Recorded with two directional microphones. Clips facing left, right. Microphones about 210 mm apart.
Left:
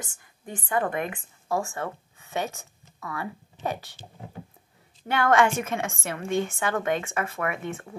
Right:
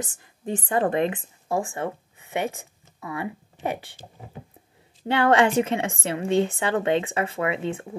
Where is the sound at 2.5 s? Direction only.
20° right (ahead or behind).